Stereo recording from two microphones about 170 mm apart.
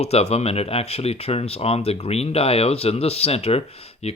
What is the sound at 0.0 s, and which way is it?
Speech, 35° left (ahead or behind).